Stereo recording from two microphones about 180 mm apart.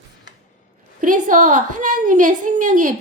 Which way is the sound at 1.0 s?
45° right (ahead or behind).